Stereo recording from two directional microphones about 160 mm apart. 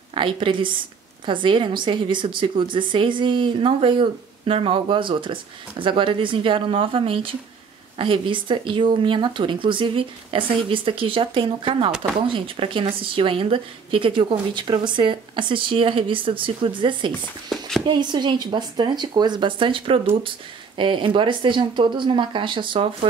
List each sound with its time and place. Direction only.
0.1 s a woman's voice: 30° right (ahead or behind)
17.5 s a sound: centre (ahead or behind)
17.8 s a woman's voice: 30° right (ahead or behind)